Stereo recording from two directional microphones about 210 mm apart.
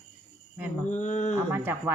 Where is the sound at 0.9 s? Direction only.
35° left (ahead or behind).